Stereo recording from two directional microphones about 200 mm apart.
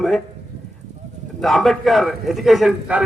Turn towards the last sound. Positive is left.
turn(degrees=-5)  # may be behind; listen again after turning